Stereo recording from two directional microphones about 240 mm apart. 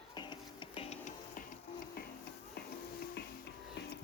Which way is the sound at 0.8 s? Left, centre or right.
Left.